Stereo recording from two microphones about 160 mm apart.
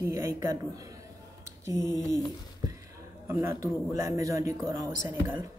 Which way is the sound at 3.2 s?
15° right (ahead or behind).